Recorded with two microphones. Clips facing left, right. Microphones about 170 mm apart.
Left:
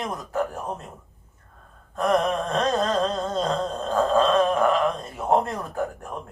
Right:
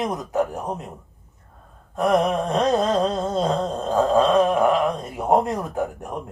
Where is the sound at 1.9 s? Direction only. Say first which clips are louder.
Right 3 dB; 15° right (ahead or behind).